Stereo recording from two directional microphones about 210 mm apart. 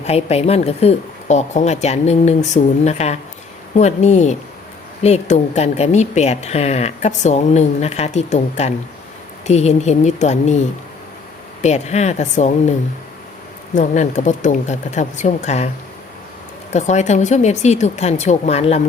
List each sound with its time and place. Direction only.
0.0 s a woman's voice: 30° left (ahead or behind)
11.6 s a woman's voice: 30° left (ahead or behind)
13.7 s a woman's voice: 35° left (ahead or behind)
16.7 s a woman's voice: 35° left (ahead or behind)